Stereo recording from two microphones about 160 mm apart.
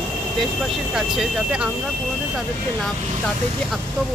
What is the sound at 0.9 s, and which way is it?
Speech, 5° right (ahead or behind).